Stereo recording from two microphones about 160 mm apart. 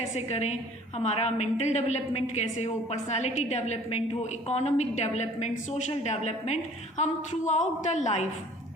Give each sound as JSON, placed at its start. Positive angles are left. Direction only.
{"t": 0.2, "sound": "a woman's voice", "side_deg": 45}